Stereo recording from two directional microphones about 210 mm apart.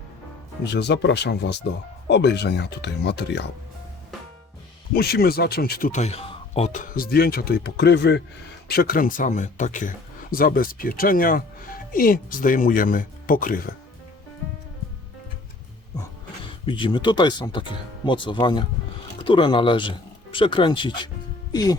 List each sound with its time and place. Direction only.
0.6 s speech: 55° left (ahead or behind)
4.9 s speech: 45° left (ahead or behind); by 6.8 s 30° left (ahead or behind)
6.9 s speech: 45° left (ahead or behind)
16.6 s speech: 25° left (ahead or behind)